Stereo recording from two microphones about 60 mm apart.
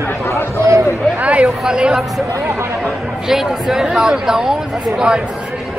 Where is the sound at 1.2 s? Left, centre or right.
Right.